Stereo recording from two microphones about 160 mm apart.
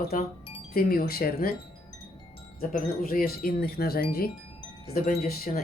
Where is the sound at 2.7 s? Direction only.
65° left (ahead or behind).